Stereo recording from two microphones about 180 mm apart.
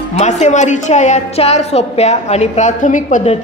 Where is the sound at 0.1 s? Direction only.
40° left (ahead or behind).